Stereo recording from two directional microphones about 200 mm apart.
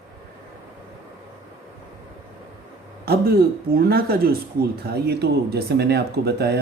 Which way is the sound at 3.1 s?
50° right (ahead or behind).